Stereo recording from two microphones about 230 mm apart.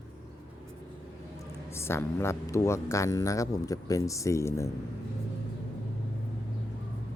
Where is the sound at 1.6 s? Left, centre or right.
Centre.